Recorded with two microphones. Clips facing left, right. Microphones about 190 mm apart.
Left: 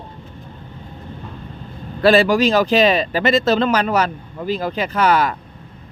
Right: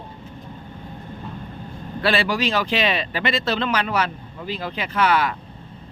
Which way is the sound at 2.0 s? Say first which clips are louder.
Left 8 dB; 45° left (ahead or behind).